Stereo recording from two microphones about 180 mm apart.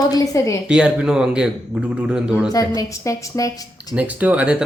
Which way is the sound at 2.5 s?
20° left (ahead or behind).